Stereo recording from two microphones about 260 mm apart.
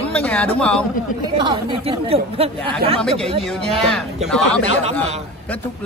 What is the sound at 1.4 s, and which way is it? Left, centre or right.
Speech, centre.